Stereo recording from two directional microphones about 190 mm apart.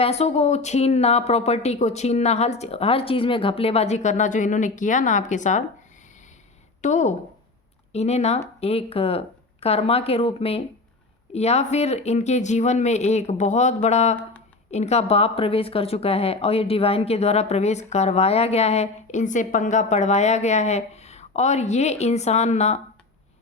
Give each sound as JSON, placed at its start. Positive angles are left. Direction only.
{"t": 0.0, "sound": "a woman's voice", "side_deg": 35}
{"t": 6.8, "sound": "a woman's voice", "side_deg": 40}